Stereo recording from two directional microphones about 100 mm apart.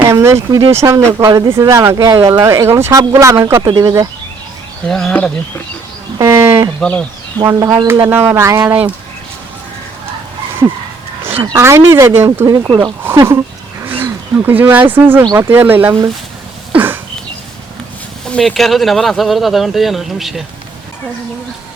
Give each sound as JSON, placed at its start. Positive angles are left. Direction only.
{"t": 0.0, "sound": "speech", "side_deg": -25}
{"t": 4.9, "sound": "speech", "side_deg": 5}
{"t": 6.1, "sound": "livestock", "side_deg": -30}
{"t": 6.7, "sound": "speech", "side_deg": 10}
{"t": 7.4, "sound": "speech", "side_deg": -30}
{"t": 11.5, "sound": "speech", "side_deg": -30}
{"t": 16.7, "sound": "a sound", "side_deg": -20}
{"t": 18.3, "sound": "speech", "side_deg": 5}